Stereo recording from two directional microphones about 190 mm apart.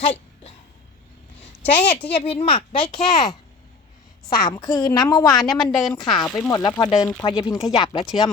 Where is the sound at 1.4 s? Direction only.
30° left (ahead or behind).